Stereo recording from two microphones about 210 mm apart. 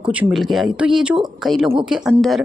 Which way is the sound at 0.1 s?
5° right (ahead or behind).